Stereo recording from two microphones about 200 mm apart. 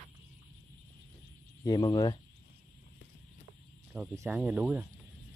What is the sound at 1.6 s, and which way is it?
Speech, 20° left (ahead or behind).